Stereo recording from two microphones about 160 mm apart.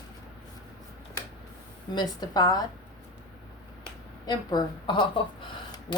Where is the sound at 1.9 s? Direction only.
25° left (ahead or behind).